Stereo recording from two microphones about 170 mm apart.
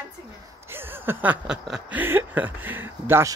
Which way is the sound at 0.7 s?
10° right (ahead or behind).